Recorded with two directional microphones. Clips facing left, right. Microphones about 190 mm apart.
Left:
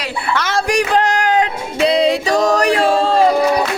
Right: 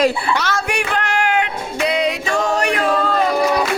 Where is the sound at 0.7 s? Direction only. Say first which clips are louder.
Left 6 dB; 35° left (ahead or behind).